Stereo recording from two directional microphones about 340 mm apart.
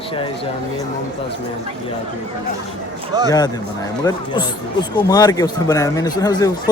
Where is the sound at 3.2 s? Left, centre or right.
Centre.